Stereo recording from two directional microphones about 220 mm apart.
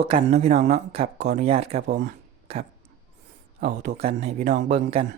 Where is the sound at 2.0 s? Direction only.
30° right (ahead or behind).